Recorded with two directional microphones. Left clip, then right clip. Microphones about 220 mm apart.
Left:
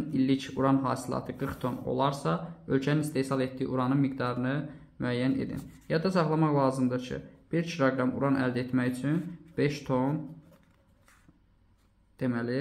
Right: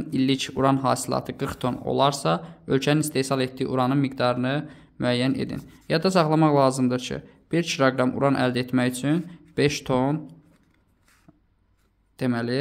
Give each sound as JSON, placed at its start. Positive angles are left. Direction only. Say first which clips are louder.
{"t": 0.1, "sound": "speech", "louder": "right 6 dB", "side_deg": -45}
{"t": 12.2, "sound": "speech", "louder": "right 5 dB", "side_deg": -45}